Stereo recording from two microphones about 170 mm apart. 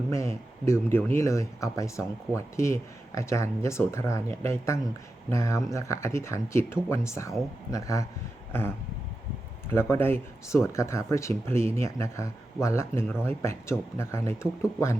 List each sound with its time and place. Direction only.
0.1 s speech: 15° left (ahead or behind)